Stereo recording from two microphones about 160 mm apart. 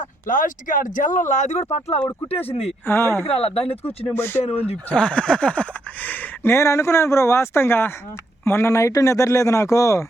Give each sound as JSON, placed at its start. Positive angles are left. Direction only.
{"t": 0.3, "sound": "speech", "side_deg": 55}
{"t": 2.8, "sound": "speech", "side_deg": 15}
{"t": 3.2, "sound": "speech", "side_deg": 40}
{"t": 4.0, "sound": "speech", "side_deg": 15}
{"t": 4.4, "sound": "speech", "side_deg": 40}
{"t": 4.9, "sound": "a man's voice", "side_deg": 5}